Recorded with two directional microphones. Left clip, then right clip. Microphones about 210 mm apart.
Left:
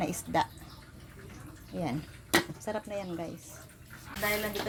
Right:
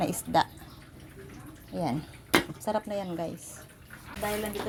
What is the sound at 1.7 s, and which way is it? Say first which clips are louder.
Speech: right 4 dB; 5° right (ahead or behind).